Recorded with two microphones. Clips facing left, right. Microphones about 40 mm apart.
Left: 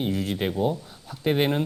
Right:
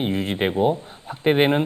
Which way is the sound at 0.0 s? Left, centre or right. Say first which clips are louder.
Right 4 dB; right.